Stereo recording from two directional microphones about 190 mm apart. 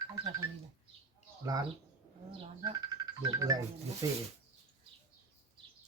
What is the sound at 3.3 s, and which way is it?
Speech, 20° right (ahead or behind).